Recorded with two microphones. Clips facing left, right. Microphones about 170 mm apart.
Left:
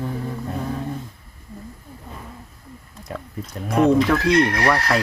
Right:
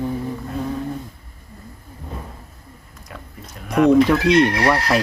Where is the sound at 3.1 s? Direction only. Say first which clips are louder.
Left 6 dB; 35° left (ahead or behind).